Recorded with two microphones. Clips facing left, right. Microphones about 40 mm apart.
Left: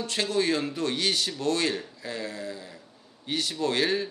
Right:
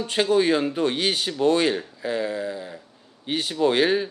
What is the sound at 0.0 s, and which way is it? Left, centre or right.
Speech, centre.